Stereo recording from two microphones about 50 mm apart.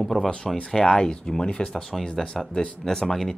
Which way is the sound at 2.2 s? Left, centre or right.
Centre.